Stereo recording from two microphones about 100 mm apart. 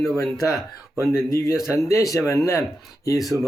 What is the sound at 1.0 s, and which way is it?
Speech, 25° left (ahead or behind).